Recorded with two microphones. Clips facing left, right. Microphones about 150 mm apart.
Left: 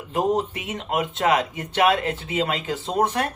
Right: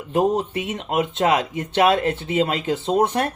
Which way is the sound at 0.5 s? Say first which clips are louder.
Right 3 dB; 30° right (ahead or behind).